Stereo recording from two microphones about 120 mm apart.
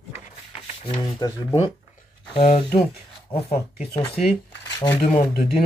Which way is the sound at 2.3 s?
55° left (ahead or behind).